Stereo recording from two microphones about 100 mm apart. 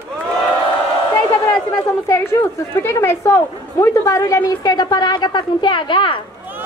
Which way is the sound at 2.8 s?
25° left (ahead or behind).